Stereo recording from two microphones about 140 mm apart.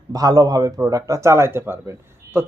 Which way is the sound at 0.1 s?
25° right (ahead or behind).